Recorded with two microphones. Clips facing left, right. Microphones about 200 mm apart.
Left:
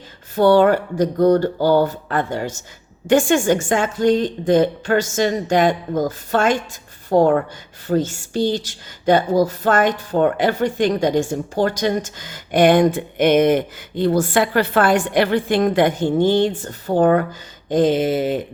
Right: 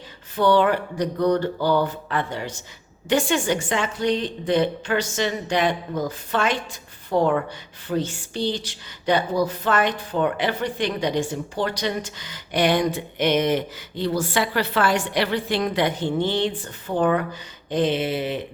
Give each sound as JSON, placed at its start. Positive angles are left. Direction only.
{"t": 0.3, "sound": "speech", "side_deg": 45}